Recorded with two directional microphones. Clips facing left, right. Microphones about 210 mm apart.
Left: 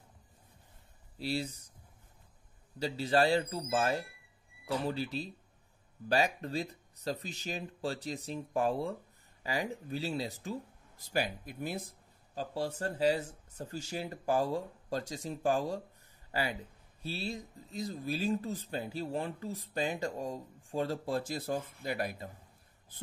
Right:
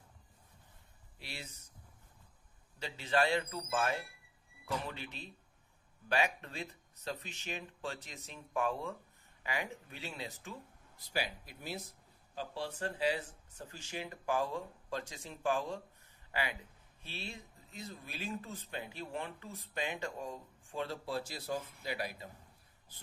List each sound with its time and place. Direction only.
1.1 s speech: 35° left (ahead or behind)
2.8 s speech: 35° left (ahead or behind)
11.1 s speech: 50° left (ahead or behind)
12.4 s speech: 40° left (ahead or behind)
16.3 s a sound: 40° left (ahead or behind)
17.0 s speech: 35° left (ahead or behind)